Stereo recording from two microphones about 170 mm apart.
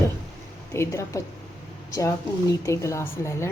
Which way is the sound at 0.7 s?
15° left (ahead or behind).